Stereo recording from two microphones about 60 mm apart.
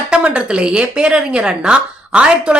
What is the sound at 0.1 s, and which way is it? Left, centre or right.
A woman's voice, centre.